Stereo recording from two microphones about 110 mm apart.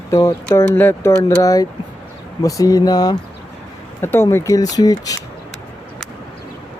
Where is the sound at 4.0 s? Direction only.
20° left (ahead or behind).